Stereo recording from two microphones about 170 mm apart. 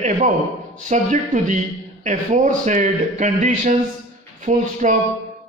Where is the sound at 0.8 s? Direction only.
45° right (ahead or behind).